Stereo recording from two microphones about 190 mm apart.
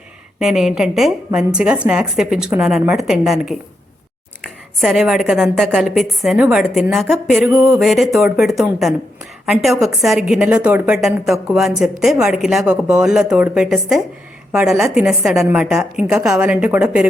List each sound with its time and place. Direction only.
0.3 s a woman's voice: 5° right (ahead or behind)
7.5 s a sound: 20° right (ahead or behind)
7.8 s a woman's voice: centre (ahead or behind)